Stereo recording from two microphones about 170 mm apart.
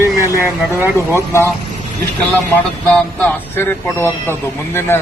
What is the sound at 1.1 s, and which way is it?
Speech, 15° left (ahead or behind).